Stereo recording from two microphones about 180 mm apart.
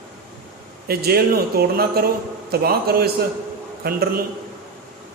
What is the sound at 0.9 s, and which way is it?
A man's voice, 60° right (ahead or behind).